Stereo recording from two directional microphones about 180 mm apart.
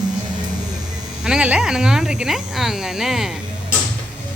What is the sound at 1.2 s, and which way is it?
Speech, 5° right (ahead or behind).